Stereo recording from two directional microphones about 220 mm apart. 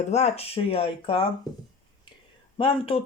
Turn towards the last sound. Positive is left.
turn(degrees=25)  # may be behind; listen again after turning